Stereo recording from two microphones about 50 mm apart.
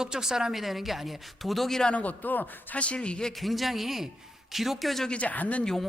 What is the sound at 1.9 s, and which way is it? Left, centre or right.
Speech, left.